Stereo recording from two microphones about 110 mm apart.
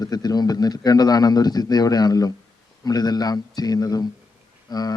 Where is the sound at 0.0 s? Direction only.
40° left (ahead or behind).